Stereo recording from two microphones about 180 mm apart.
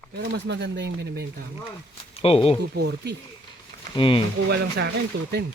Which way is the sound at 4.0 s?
30° left (ahead or behind).